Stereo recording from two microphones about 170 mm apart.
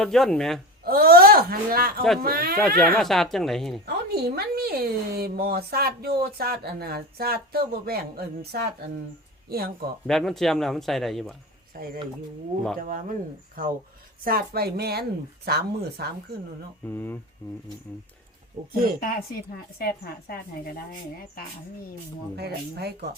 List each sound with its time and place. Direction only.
0.0 s speech: 5° left (ahead or behind)
0.9 s speech: 60° right (ahead or behind)
2.6 s speech: 10° left (ahead or behind)
3.8 s speech: 70° right (ahead or behind)
10.1 s speech: centre (ahead or behind)
11.7 s speech: 60° right (ahead or behind)
16.8 s speech: 10° left (ahead or behind)
18.6 s speech: 45° right (ahead or behind)
18.9 s a woman's voice: 55° left (ahead or behind)
22.4 s speech: 70° right (ahead or behind)